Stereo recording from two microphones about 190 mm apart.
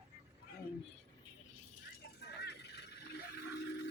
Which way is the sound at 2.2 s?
60° left (ahead or behind).